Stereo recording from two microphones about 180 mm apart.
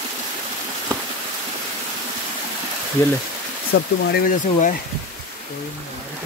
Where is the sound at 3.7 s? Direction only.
55° left (ahead or behind).